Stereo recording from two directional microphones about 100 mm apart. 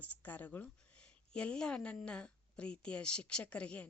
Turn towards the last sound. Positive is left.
turn(degrees=10)  # may be behind; listen again after turning